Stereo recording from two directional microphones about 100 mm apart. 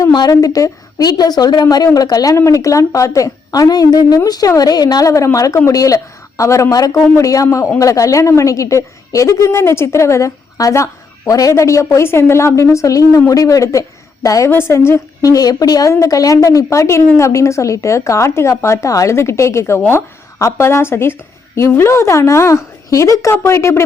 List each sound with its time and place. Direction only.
0.1 s a woman's voice: 40° left (ahead or behind)